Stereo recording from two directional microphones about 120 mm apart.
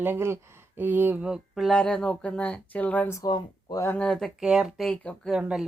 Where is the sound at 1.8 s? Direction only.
10° left (ahead or behind).